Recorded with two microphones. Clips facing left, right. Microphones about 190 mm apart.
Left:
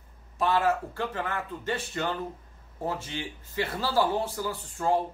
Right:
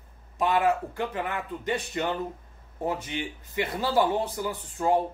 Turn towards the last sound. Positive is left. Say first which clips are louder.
# right 2 dB
turn(degrees=-15)  # may be behind; listen again after turning